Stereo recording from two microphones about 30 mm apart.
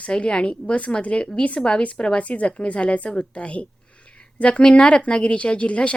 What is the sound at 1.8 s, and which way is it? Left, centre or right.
A woman's voice, left.